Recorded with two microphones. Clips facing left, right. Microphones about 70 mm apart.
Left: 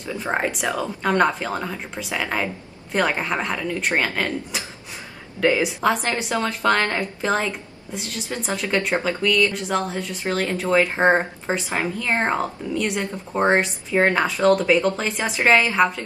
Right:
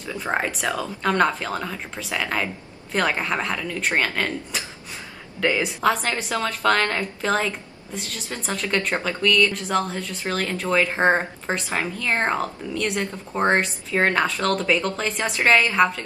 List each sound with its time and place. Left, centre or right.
0.0 s a woman's voice: centre
0.7 s a woman's voice: centre